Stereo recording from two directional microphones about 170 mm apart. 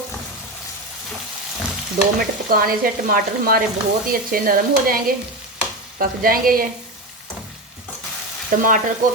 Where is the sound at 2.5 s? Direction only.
60° right (ahead or behind).